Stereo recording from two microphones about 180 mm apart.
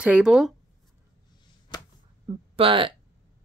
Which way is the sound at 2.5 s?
30° right (ahead or behind).